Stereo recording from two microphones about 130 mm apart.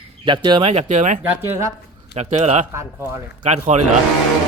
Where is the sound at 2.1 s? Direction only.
60° right (ahead or behind).